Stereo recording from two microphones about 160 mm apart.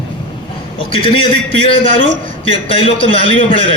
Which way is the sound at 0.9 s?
35° left (ahead or behind).